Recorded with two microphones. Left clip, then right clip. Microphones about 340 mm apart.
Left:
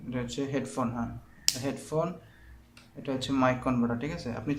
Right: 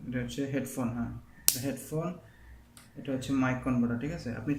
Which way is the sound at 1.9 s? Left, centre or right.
Left.